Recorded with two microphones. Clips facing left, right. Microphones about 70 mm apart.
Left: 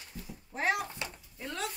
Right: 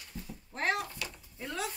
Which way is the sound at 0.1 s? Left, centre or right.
Centre.